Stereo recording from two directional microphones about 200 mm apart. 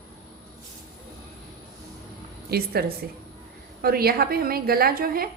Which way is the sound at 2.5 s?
50° right (ahead or behind).